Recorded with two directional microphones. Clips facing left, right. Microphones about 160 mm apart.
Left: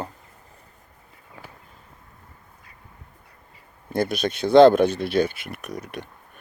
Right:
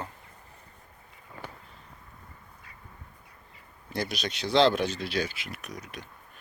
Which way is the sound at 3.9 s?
50° left (ahead or behind).